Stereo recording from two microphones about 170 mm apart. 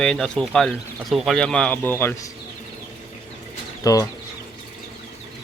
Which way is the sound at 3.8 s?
20° left (ahead or behind).